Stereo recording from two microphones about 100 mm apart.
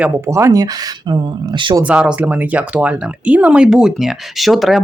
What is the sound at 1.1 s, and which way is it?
Speech, 55° right (ahead or behind).